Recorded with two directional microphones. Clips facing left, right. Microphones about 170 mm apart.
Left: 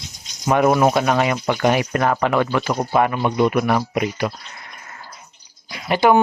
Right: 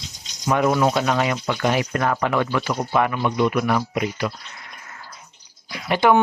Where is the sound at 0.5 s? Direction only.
55° left (ahead or behind).